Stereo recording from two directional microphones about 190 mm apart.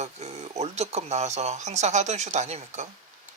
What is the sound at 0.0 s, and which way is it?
Speech, 35° right (ahead or behind).